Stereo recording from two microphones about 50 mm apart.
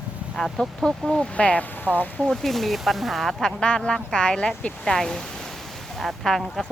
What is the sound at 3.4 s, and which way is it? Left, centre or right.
Speech, centre.